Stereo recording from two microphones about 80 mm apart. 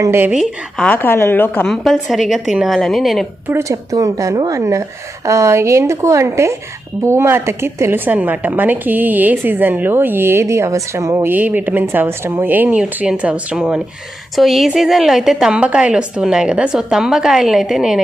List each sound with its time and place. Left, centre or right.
0.9 s a woman's voice: left
1.6 s a woman's voice: centre
3.6 s a woman's voice: right; by 13.8 s centre
14.3 s a woman's voice: centre